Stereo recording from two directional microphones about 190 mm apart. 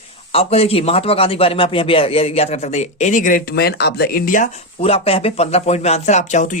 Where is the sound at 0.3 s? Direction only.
30° left (ahead or behind).